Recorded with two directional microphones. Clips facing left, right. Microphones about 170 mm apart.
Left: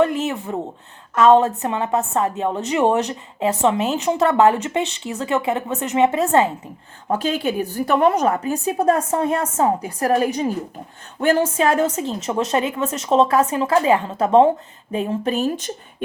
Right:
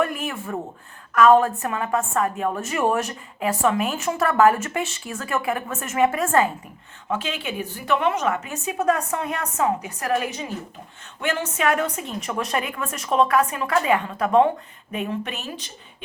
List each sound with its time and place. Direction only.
0.0 s a woman's voice: 25° left (ahead or behind)
7.1 s a woman's voice: 40° left (ahead or behind)